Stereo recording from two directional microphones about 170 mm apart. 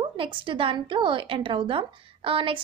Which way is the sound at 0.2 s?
30° right (ahead or behind).